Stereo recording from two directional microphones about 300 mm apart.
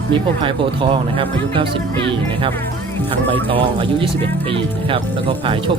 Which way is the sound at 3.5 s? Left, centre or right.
Centre.